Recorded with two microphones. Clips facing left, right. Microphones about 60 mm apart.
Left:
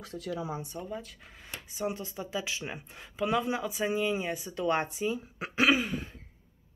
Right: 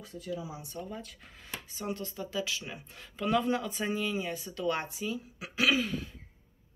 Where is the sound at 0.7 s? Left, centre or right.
Centre; by 2.8 s left.